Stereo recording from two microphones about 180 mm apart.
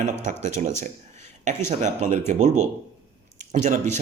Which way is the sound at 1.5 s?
40° right (ahead or behind).